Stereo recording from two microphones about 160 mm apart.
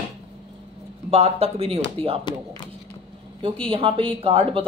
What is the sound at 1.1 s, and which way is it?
Speech, 40° right (ahead or behind).